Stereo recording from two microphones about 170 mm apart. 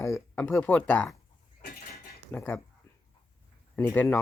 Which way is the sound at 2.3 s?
10° left (ahead or behind).